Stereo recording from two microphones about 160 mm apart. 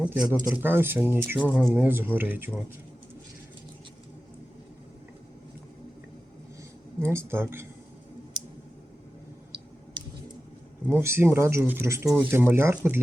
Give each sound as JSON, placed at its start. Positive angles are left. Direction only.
{"t": 0.0, "sound": "speech", "side_deg": -5}
{"t": 7.0, "sound": "speech", "side_deg": -15}
{"t": 10.8, "sound": "speech", "side_deg": -15}